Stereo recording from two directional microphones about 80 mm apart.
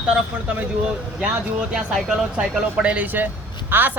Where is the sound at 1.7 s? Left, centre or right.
Centre; by 4.0 s right.